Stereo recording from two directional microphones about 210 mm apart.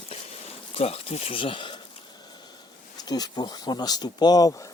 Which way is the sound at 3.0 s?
20° left (ahead or behind).